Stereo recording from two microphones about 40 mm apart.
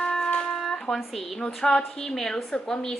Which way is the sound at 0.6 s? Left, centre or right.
Centre.